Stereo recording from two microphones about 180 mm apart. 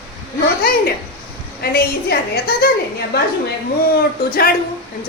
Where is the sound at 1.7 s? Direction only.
55° left (ahead or behind).